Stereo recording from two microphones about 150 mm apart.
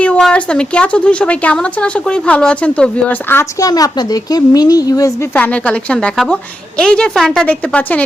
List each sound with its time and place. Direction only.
0.0 s speech: 5° left (ahead or behind)
3.7 s speech: 25° left (ahead or behind)
5.3 s speech: 10° left (ahead or behind)